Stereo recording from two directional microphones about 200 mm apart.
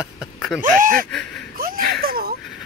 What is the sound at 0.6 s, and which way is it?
Speech, 45° right (ahead or behind).